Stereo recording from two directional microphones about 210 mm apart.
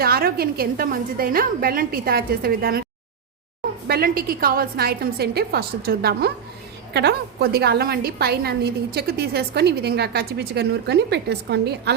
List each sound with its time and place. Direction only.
0.0 s a woman's voice: 45° right (ahead or behind)
3.8 s a woman's voice: 45° right (ahead or behind)